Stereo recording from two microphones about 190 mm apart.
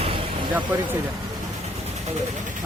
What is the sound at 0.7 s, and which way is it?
Speech, 10° right (ahead or behind).